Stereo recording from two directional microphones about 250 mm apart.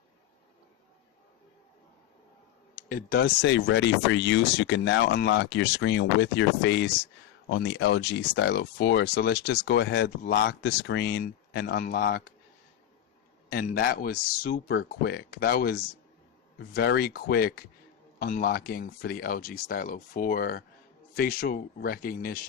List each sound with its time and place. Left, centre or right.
2.7 s speech: left
13.5 s speech: left